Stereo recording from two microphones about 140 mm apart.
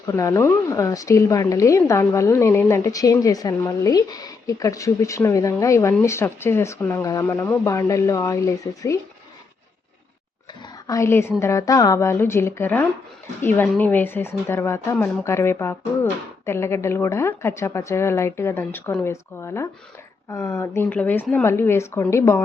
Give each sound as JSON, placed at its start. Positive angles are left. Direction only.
{"t": 0.1, "sound": "a woman's voice", "side_deg": 20}
{"t": 10.8, "sound": "a woman's voice", "side_deg": 20}
{"t": 20.9, "sound": "a woman's voice", "side_deg": 10}